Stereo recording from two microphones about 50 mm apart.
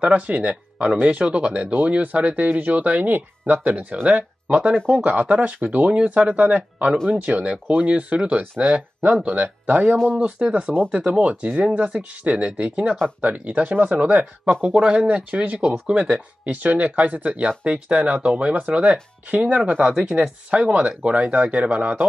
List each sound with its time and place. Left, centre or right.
0.0 s speech: right
13.9 s speech: centre
14.5 s speech: right
14.8 s speech: centre
15.0 s speech: right
17.5 s speech: right
19.9 s speech: centre
20.2 s speech: right